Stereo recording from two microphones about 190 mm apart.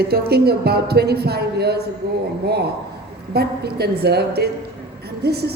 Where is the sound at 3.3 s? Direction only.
55° right (ahead or behind).